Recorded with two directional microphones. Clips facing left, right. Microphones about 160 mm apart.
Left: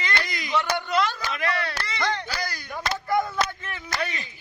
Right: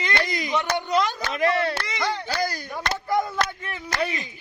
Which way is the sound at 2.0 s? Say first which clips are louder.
Left 2 dB; 5° right (ahead or behind).